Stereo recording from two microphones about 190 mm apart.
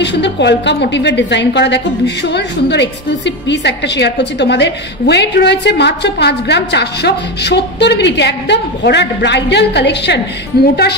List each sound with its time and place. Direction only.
0.0 s a woman's voice: 65° left (ahead or behind)